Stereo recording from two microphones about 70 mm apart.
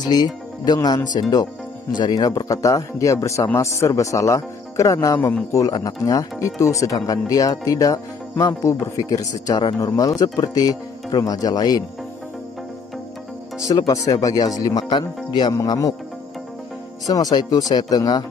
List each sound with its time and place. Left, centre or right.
0.0 s speech: left
0.8 s speech: left
1.3 s speech: left
8.6 s speech: left
13.6 s speech: left
15.5 s speech: left
17.0 s speech: left